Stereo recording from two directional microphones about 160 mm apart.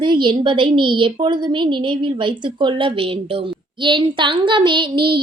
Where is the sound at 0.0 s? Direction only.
30° right (ahead or behind).